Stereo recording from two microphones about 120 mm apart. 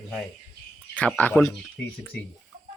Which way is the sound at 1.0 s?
15° left (ahead or behind).